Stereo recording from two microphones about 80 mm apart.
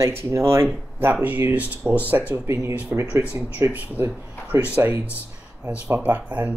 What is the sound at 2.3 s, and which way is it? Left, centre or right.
Speech, right.